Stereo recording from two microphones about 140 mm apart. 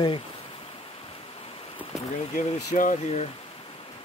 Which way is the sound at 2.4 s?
70° left (ahead or behind).